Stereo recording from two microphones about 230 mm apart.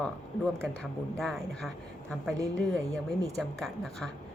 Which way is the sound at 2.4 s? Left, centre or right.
Centre.